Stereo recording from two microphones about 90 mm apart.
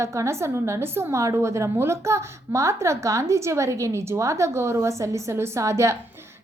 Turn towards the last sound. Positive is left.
turn(degrees=-35)  # may be behind; listen again after turning